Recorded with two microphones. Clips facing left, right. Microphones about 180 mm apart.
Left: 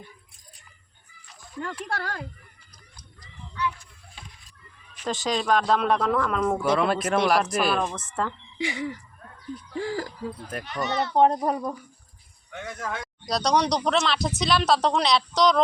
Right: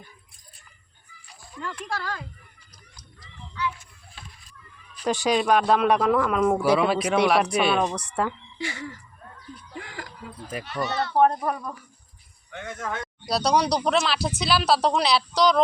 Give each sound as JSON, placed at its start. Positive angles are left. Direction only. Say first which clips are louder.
{"t": 1.9, "sound": "speech", "louder": "even", "side_deg": 60}
{"t": 5.0, "sound": "speech", "louder": "right 3 dB", "side_deg": -15}
{"t": 7.9, "sound": "speech", "louder": "right 3 dB", "side_deg": -15}
{"t": 8.5, "sound": "speech", "louder": "left 4 dB", "side_deg": 15}
{"t": 9.7, "sound": "speech", "louder": "left 10 dB", "side_deg": 35}
{"t": 10.8, "sound": "speech", "louder": "even", "side_deg": 20}
{"t": 12.5, "sound": "speech", "louder": "right 1 dB", "side_deg": 0}